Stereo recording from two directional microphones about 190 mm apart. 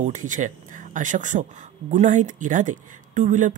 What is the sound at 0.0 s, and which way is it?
Speech, 40° right (ahead or behind).